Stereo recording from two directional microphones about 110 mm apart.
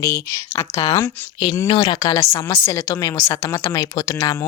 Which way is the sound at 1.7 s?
55° left (ahead or behind).